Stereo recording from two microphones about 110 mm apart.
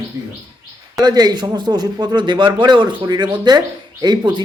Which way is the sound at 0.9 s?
40° right (ahead or behind).